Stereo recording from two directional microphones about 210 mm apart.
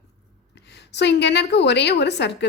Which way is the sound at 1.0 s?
55° left (ahead or behind).